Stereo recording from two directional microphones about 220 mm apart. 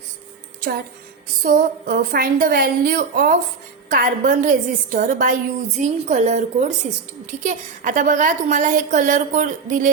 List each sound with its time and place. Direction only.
1.4 s a woman's voice: 40° right (ahead or behind)